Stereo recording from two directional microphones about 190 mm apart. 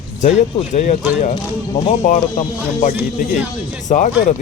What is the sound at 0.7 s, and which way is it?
Speech, 40° left (ahead or behind).